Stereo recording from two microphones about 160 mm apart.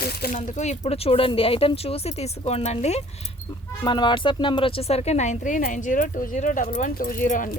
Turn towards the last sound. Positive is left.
turn(degrees=60)  # may be behind; listen again after turning